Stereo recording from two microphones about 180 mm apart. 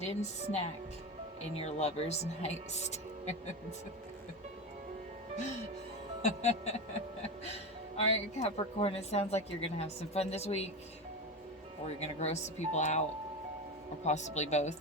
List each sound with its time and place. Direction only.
0.0 s a woman's voice: 40° left (ahead or behind)
6.2 s a woman's voice: 40° left (ahead or behind)
7.9 s a woman's voice: 35° left (ahead or behind)
11.9 s a woman's voice: 40° left (ahead or behind)